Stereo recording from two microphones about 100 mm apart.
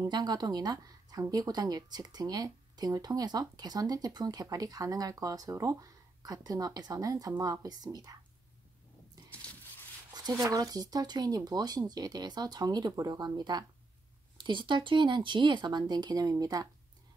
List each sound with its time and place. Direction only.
0.0 s speech: 45° right (ahead or behind)
10.1 s a sound: 45° right (ahead or behind)
10.5 s speech: 35° right (ahead or behind)